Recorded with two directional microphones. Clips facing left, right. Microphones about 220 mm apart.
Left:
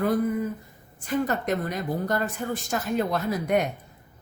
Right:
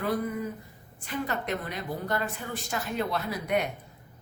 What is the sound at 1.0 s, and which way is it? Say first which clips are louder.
A woman's voice: left 6 dB; 45° left (ahead or behind).